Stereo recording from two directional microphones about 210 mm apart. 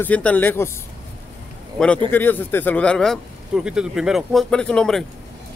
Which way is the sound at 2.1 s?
10° left (ahead or behind).